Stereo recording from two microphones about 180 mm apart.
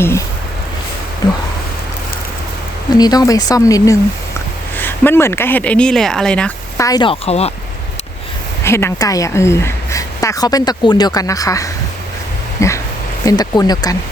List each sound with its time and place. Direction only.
0.0 s speech: 15° left (ahead or behind)
2.9 s a woman's voice: 20° left (ahead or behind); by 6.5 s 5° left (ahead or behind)
6.7 s a woman's voice: 20° left (ahead or behind); by 7.5 s 35° left (ahead or behind)
8.6 s a woman's voice: 15° left (ahead or behind)
12.5 s dog: 15° left (ahead or behind)
13.2 s a woman's voice: 20° left (ahead or behind)